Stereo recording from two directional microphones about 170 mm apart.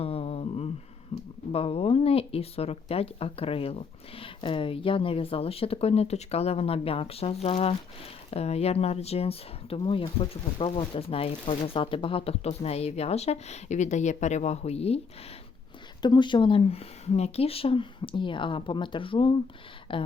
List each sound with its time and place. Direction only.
0.0 s a sound: 35° left (ahead or behind)
1.5 s speech: 35° left (ahead or behind)
16.0 s speech: 25° left (ahead or behind)